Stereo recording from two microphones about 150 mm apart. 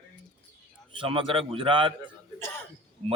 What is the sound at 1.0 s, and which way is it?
Speech, 35° right (ahead or behind).